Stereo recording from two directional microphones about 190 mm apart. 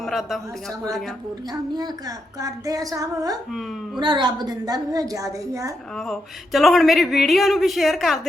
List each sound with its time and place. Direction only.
0.0 s speech: centre (ahead or behind)
1.7 s a woman's voice: 20° right (ahead or behind)
6.0 s speech: centre (ahead or behind)